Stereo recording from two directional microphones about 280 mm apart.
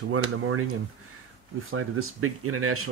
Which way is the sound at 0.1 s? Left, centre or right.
Right.